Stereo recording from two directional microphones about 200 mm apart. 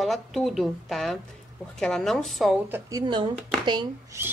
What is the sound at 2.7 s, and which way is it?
A woman's voice, 15° right (ahead or behind).